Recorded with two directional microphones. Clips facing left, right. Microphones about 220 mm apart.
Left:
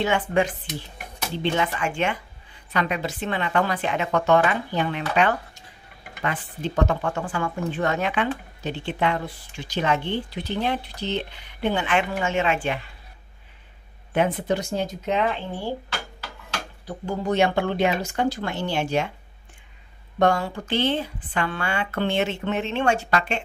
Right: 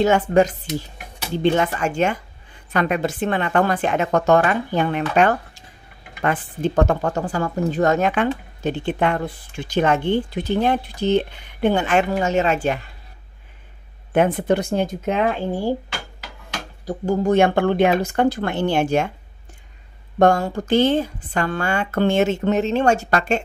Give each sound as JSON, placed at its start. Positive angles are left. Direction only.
{"t": 0.0, "sound": "speech", "side_deg": -40}
{"t": 14.1, "sound": "speech", "side_deg": -55}
{"t": 16.8, "sound": "speech", "side_deg": -45}
{"t": 20.2, "sound": "speech", "side_deg": -45}